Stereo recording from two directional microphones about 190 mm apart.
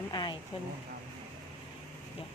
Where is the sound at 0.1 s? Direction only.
20° left (ahead or behind).